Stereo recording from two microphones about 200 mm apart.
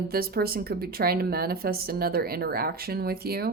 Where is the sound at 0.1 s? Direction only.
50° right (ahead or behind).